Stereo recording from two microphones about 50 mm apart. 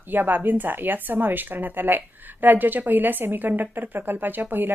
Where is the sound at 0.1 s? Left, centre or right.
Right.